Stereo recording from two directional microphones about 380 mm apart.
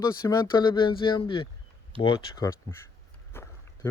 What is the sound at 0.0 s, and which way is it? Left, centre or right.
Speech, centre.